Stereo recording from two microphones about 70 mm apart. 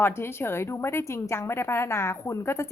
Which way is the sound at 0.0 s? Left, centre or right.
Left.